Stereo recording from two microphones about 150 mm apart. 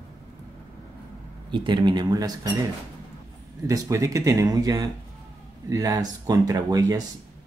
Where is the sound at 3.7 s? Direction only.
20° right (ahead or behind).